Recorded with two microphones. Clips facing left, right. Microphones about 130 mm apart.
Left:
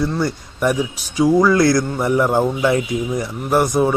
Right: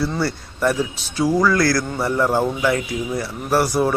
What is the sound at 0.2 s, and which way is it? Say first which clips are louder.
A man's voice: left 1 dB; 15° left (ahead or behind).